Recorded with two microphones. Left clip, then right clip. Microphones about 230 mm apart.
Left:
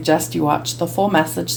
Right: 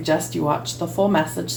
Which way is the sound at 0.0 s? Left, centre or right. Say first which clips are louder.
Left 4 dB; left.